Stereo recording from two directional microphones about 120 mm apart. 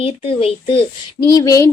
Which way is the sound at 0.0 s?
50° left (ahead or behind).